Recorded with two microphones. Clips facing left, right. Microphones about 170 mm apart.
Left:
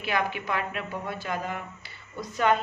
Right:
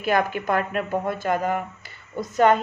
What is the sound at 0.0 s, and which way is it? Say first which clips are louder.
A woman's voice: right 6 dB; 45° right (ahead or behind).